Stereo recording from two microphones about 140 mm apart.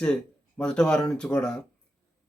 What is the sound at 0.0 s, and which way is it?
Speech, 5° left (ahead or behind).